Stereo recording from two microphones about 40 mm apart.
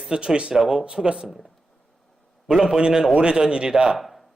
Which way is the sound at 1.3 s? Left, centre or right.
Centre.